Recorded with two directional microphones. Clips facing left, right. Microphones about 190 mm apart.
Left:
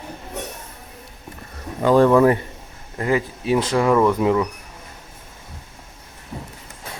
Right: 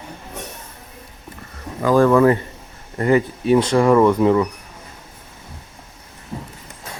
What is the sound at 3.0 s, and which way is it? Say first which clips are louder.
Speech: right 5 dB; 5° left (ahead or behind).